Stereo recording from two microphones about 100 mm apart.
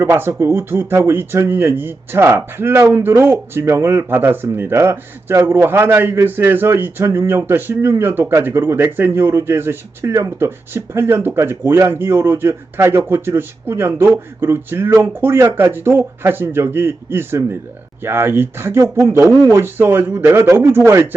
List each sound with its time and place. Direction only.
0.0 s speech: 25° right (ahead or behind)